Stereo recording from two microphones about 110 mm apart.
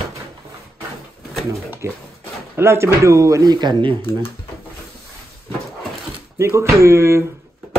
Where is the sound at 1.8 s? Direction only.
25° right (ahead or behind); by 3.9 s 40° right (ahead or behind).